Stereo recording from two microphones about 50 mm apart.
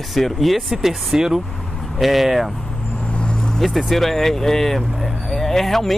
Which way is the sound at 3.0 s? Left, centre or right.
Centre.